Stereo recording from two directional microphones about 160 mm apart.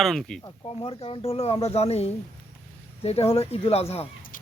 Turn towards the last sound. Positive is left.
turn(degrees=40)  # may be behind; listen again after turning